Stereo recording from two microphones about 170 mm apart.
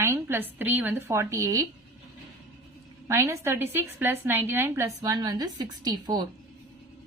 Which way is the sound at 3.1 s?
15° right (ahead or behind).